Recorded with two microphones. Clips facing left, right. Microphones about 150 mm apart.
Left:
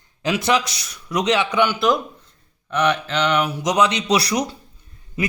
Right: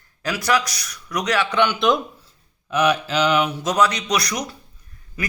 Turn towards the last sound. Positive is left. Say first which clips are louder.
# left 5 dB
turn(degrees=25)  # may be behind; listen again after turning